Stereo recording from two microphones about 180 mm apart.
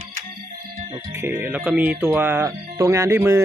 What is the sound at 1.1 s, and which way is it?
Speech, 15° right (ahead or behind).